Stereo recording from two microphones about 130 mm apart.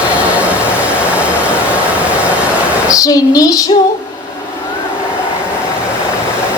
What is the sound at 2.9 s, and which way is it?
Speech, 30° left (ahead or behind).